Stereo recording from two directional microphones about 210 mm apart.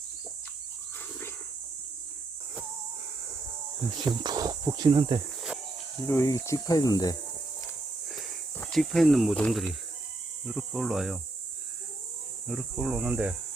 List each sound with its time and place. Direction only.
4.0 s speech: 20° right (ahead or behind)
6.1 s speech: 15° left (ahead or behind)
8.0 s a sound: centre (ahead or behind)
8.5 s speech: 5° left (ahead or behind)
12.5 s speech: 5° right (ahead or behind)